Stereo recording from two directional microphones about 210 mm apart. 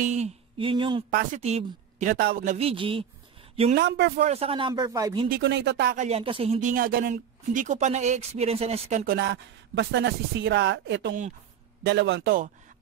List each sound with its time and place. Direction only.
0.0 s a sound: 35° right (ahead or behind)
1.1 s speech: 35° right (ahead or behind)
3.7 s speech: 55° right (ahead or behind)
4.2 s speech: 30° right (ahead or behind)
5.3 s speech: 55° right (ahead or behind)
6.0 s speech: 25° right (ahead or behind)
9.0 s speech: 50° right (ahead or behind)